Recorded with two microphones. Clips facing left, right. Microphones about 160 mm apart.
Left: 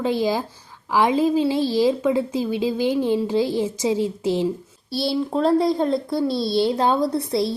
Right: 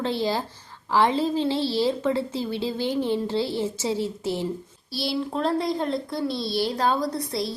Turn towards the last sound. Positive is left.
turn(degrees=25)  # may be behind; listen again after turning